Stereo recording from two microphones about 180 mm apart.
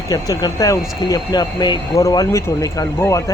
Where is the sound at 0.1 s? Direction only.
20° left (ahead or behind).